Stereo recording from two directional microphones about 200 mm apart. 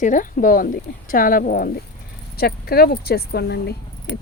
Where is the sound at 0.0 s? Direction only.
40° left (ahead or behind).